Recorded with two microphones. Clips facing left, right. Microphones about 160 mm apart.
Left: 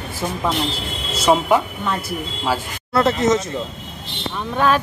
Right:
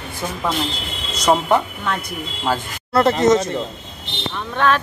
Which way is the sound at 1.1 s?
10° left (ahead or behind).